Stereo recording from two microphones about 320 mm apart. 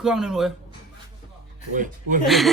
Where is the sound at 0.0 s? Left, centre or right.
Centre.